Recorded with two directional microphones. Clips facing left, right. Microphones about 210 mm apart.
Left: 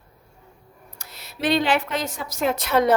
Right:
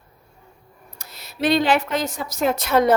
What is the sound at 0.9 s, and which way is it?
A woman's voice, 40° right (ahead or behind).